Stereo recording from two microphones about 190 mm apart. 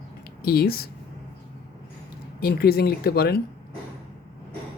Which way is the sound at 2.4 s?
55° left (ahead or behind).